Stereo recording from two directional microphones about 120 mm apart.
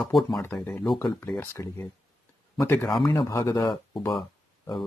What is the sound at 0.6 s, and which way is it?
Speech, 15° left (ahead or behind).